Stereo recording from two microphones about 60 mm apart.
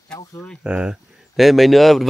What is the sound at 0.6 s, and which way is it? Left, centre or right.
Speech, centre.